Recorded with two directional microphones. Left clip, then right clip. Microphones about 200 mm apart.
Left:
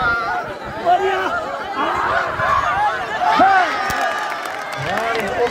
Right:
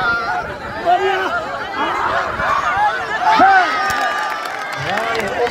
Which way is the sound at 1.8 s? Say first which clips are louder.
Even; centre (ahead or behind).